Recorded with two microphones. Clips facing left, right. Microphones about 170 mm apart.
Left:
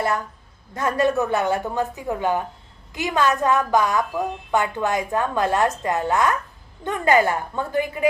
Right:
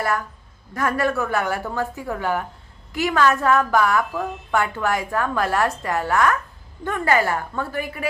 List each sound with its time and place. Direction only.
0.7 s a woman's voice: 20° left (ahead or behind)